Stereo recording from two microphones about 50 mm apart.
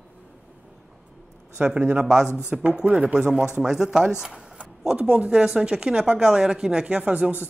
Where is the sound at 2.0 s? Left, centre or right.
Centre.